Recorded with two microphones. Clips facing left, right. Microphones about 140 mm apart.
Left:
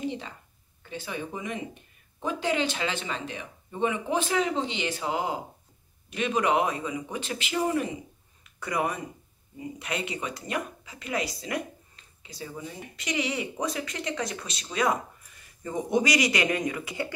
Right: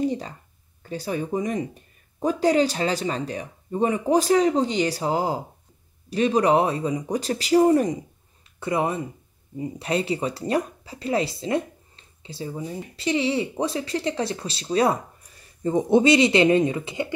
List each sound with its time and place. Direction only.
0.0 s speech: 40° right (ahead or behind)
8.5 s speech: 25° right (ahead or behind)